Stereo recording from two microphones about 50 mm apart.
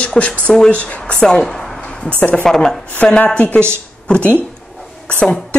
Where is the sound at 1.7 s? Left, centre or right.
Left.